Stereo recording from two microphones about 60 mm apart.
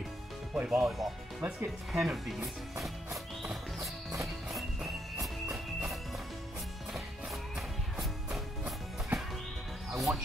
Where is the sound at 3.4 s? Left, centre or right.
Centre.